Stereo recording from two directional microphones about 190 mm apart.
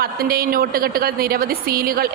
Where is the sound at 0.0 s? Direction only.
50° right (ahead or behind).